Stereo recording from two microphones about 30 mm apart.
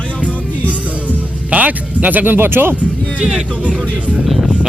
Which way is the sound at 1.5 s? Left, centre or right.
Right.